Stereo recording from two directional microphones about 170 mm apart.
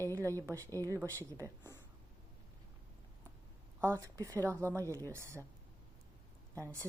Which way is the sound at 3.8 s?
15° right (ahead or behind).